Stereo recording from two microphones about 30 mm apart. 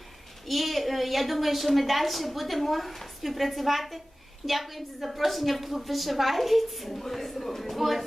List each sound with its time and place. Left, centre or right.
0.4 s a woman's voice: centre